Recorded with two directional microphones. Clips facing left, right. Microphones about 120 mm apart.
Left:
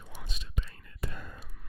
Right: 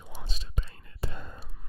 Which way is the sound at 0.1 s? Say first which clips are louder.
Right 1 dB; 30° right (ahead or behind).